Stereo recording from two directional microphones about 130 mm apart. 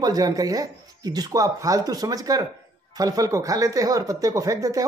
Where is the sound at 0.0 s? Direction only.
30° right (ahead or behind).